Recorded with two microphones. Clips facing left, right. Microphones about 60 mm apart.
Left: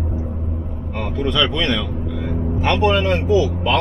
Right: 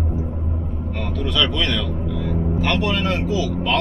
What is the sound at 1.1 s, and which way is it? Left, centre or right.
Speech, left.